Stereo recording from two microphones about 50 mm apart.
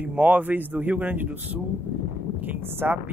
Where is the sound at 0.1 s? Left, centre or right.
Right.